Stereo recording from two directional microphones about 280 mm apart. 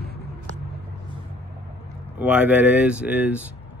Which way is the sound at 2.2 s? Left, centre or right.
Centre.